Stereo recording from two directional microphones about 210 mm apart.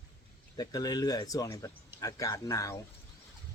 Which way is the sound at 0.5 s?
15° left (ahead or behind).